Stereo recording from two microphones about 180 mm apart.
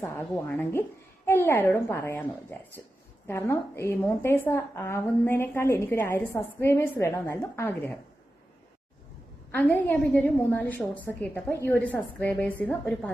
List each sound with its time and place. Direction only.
0.0 s a woman's voice: 10° left (ahead or behind)
9.6 s a woman's voice: 10° left (ahead or behind)